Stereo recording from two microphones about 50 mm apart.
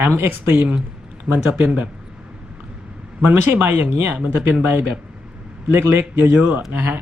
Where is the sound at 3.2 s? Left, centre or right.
Right.